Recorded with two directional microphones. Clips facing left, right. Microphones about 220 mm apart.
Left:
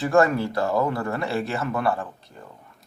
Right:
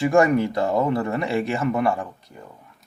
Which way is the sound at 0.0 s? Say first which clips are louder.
Right 2 dB; 15° right (ahead or behind).